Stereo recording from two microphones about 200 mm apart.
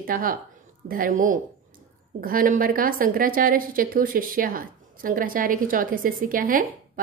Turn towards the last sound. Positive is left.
turn(degrees=-45)  # may be behind; listen again after turning